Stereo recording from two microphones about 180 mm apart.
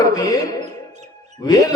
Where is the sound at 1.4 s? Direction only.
20° left (ahead or behind).